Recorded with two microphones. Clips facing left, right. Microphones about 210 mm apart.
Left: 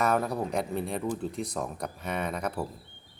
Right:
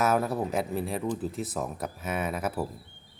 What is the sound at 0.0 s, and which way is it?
Speech, 5° right (ahead or behind).